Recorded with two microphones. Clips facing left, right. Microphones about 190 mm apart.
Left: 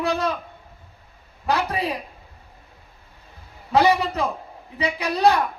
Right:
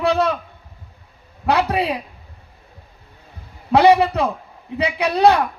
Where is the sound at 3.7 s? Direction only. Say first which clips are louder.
Right 6 dB; 65° right (ahead or behind).